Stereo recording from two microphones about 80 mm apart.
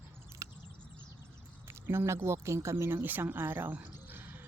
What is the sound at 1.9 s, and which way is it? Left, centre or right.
Speech, right.